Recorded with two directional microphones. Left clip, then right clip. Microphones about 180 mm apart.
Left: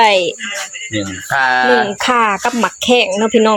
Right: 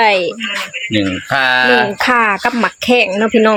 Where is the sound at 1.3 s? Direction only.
70° right (ahead or behind).